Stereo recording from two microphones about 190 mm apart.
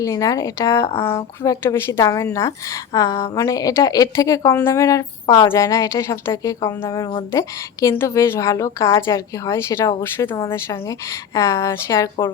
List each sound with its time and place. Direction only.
0.0 s a woman's voice: 15° left (ahead or behind)